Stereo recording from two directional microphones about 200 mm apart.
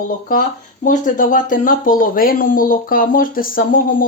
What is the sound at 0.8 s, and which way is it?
Speech, 40° left (ahead or behind).